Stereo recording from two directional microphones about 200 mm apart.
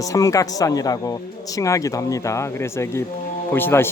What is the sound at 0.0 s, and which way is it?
Speech, 15° left (ahead or behind).